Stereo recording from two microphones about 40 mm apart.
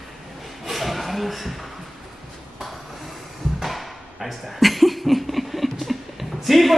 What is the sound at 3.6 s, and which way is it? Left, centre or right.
Speech, centre.